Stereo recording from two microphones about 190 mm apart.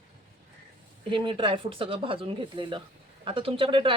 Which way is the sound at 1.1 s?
25° right (ahead or behind).